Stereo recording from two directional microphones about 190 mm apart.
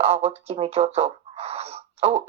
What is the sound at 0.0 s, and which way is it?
Speech, 30° right (ahead or behind).